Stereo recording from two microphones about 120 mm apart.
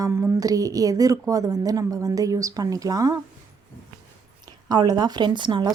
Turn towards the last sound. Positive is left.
turn(degrees=-40)  # may be behind; listen again after turning